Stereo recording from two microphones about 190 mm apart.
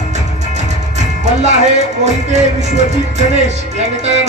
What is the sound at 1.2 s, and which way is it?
Speech, 35° right (ahead or behind).